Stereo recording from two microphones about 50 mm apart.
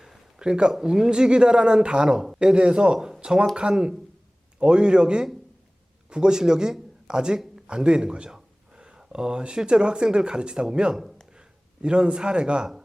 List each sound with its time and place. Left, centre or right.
0.3 s speech: centre